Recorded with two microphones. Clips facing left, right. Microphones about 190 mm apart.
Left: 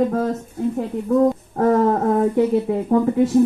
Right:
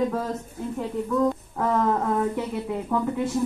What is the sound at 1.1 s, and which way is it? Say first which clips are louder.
Speech: left 8 dB; 45° left (ahead or behind).